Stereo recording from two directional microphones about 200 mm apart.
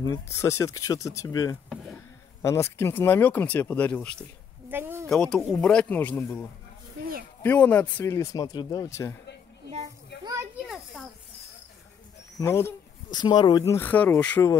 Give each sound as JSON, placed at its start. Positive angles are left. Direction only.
{"t": 0.0, "sound": "speech", "side_deg": 15}
{"t": 4.6, "sound": "a sound", "side_deg": -10}
{"t": 5.0, "sound": "speech", "side_deg": 5}
{"t": 7.4, "sound": "speech", "side_deg": 10}
{"t": 10.2, "sound": "children playing", "side_deg": -15}
{"t": 12.4, "sound": "speech", "side_deg": 10}